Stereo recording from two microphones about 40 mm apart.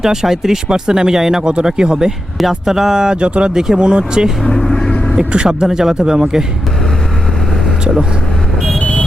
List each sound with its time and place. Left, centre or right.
0.0 s speech: centre
3.2 s speech: right
3.5 s speech: centre
4.4 s speech: centre
5.5 s speech: centre
8.8 s vehicle: left